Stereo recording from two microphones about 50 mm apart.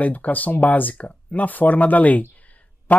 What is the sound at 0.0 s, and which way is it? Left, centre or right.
Speech, left.